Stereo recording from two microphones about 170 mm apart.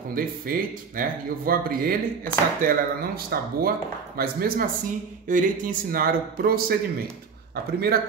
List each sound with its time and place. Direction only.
0.1 s speech: 55° right (ahead or behind)